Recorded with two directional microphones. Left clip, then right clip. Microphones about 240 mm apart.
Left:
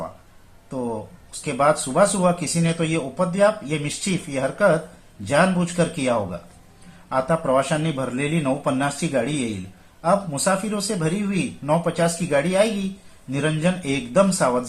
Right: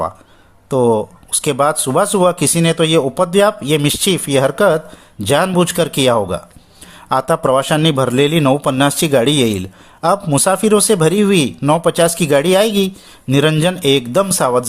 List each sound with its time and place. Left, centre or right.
0.7 s speech: right